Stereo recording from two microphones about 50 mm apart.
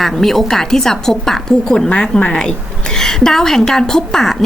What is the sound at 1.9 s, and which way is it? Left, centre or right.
A woman's voice, left.